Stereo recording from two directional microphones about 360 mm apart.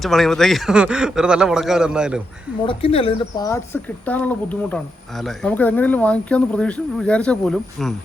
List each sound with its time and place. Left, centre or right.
0.0 s speech: centre
2.6 s speech: centre